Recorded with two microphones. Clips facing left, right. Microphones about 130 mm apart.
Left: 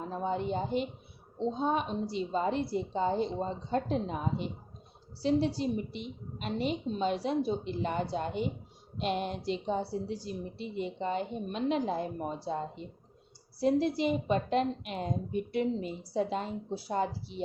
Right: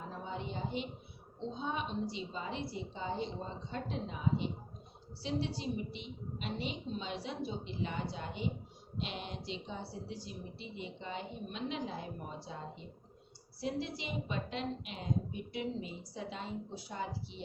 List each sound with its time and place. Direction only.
0.1 s a woman's voice: 45° left (ahead or behind)
13.6 s a woman's voice: 45° left (ahead or behind)